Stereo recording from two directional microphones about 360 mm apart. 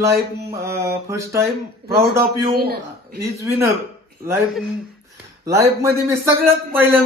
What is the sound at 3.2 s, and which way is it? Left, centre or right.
A man's voice, centre.